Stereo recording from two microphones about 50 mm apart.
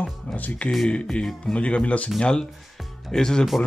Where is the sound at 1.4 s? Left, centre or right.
Left.